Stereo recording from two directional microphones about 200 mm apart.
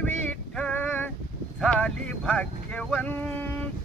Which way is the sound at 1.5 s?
5° left (ahead or behind).